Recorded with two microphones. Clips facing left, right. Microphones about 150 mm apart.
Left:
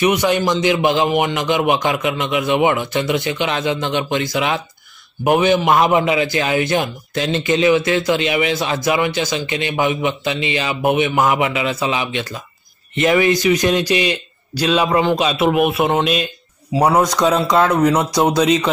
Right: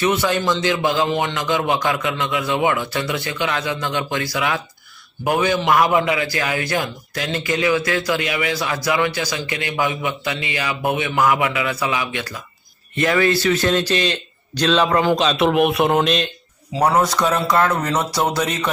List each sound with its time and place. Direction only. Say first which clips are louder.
0.0 s a man's voice: left 3 dB; 15° left (ahead or behind)